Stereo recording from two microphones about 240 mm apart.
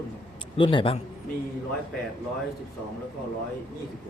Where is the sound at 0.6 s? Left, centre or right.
Left.